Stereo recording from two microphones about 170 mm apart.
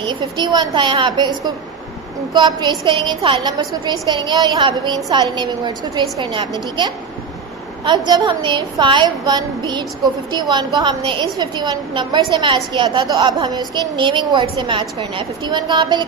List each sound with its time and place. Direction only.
0.0 s a woman's voice: 25° right (ahead or behind)
8.1 s a woman's voice: 25° right (ahead or behind)